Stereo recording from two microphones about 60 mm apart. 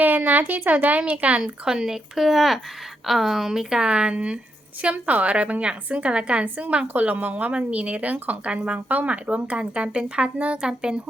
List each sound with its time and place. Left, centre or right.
0.0 s a woman's voice: right
1.6 s a woman's voice: centre